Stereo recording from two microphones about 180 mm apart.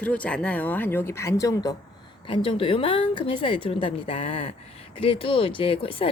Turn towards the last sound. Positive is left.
turn(degrees=30)  # may be behind; listen again after turning